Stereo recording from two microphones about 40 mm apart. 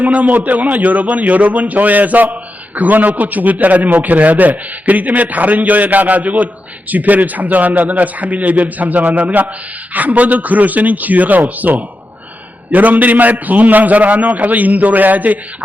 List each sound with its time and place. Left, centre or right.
0.0 s speech: right